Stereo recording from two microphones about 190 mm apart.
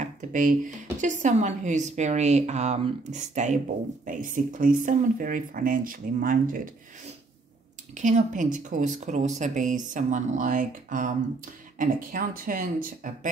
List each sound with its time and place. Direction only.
0.0 s a woman's voice: 45° right (ahead or behind)